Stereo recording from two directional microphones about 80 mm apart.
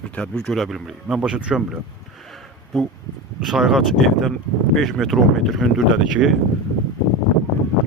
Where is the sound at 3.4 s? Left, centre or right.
Centre.